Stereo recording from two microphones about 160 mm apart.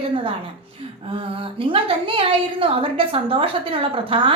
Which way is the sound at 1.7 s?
35° right (ahead or behind).